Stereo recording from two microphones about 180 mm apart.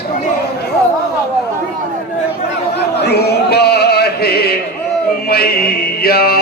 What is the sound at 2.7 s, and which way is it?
Chant, 65° left (ahead or behind).